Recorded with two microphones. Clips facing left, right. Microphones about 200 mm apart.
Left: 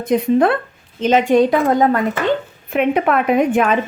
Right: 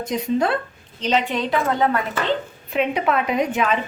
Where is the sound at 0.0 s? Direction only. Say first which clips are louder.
Left 7 dB; 55° left (ahead or behind).